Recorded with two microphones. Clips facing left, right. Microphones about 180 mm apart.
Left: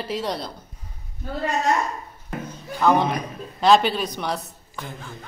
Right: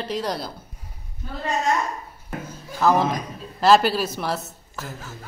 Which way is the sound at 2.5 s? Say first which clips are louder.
Even; 5° right (ahead or behind).